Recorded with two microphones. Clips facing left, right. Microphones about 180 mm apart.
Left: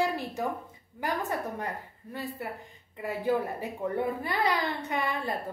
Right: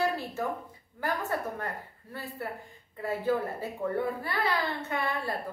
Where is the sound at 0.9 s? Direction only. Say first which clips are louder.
Even; 15° left (ahead or behind).